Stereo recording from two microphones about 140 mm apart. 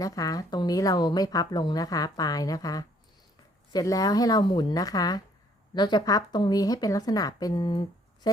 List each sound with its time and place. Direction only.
0.0 s speech: 25° left (ahead or behind)